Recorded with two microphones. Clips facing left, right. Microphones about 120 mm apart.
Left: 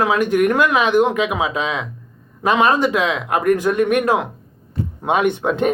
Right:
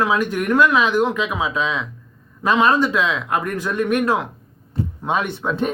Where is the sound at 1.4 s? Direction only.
60° left (ahead or behind).